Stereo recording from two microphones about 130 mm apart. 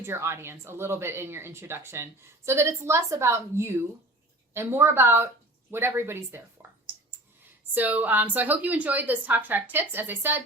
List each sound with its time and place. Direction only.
0.0 s a woman's voice: 20° right (ahead or behind)
7.7 s a woman's voice: 15° right (ahead or behind)